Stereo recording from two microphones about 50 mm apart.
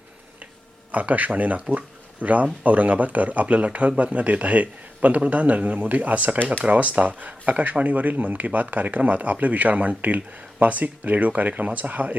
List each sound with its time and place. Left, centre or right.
0.9 s speech: right